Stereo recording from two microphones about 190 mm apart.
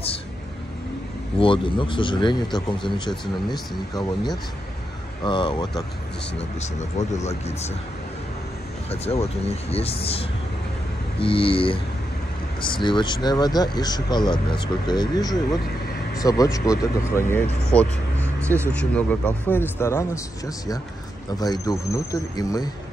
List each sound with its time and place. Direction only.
1.4 s speech: 25° left (ahead or behind)
3.1 s speech: centre (ahead or behind)
5.2 s speech: 25° left (ahead or behind)
6.6 s speech: 35° left (ahead or behind)
8.9 s speech: 35° left (ahead or behind); by 22.7 s 20° left (ahead or behind)